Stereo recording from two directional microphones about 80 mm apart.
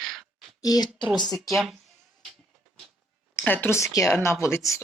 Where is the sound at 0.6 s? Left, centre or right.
Left.